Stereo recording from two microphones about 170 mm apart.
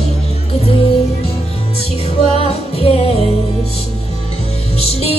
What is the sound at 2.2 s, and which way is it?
Music, 35° left (ahead or behind).